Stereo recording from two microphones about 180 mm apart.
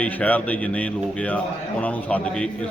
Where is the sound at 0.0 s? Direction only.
10° left (ahead or behind).